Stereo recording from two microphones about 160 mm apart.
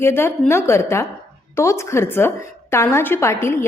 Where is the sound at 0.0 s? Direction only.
15° left (ahead or behind).